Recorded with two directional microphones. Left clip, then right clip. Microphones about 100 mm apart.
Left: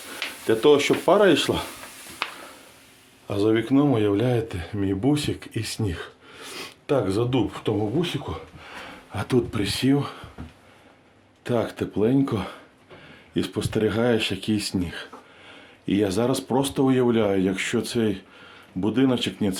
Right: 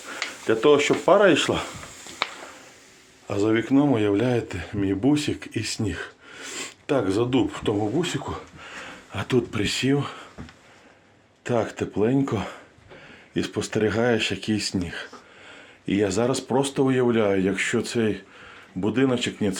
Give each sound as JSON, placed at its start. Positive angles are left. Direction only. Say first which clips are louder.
{"t": 0.1, "sound": "speech", "louder": "even", "side_deg": 10}
{"t": 3.2, "sound": "speech", "louder": "left 1 dB", "side_deg": 5}
{"t": 9.1, "sound": "speech", "louder": "even", "side_deg": 15}
{"t": 11.4, "sound": "speech", "louder": "even", "side_deg": 15}